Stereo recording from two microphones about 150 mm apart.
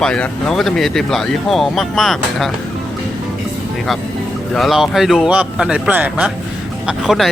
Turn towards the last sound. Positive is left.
turn(degrees=0)  # may be behind; listen again after turning